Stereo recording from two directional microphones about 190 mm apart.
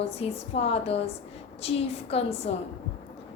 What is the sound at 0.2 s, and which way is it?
A woman's voice, 30° left (ahead or behind).